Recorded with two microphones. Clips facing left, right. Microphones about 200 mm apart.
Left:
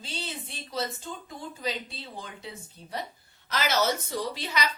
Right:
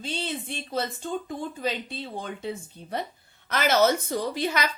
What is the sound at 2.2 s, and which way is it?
A woman's voice, 55° right (ahead or behind).